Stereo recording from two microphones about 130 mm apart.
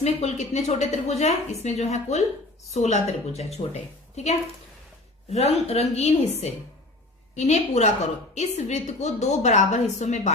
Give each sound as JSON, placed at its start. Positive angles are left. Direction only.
{"t": 0.0, "sound": "a woman's voice", "side_deg": 55}
{"t": 7.3, "sound": "a woman's voice", "side_deg": 60}